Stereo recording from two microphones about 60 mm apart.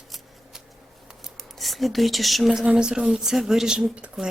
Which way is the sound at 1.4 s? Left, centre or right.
Centre.